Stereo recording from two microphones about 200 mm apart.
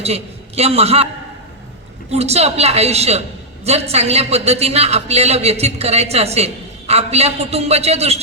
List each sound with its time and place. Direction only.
0.0 s a man's voice: 30° right (ahead or behind)
2.0 s a woman's voice: 30° right (ahead or behind)